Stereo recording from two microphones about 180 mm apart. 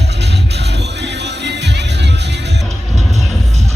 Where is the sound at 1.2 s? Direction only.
70° right (ahead or behind).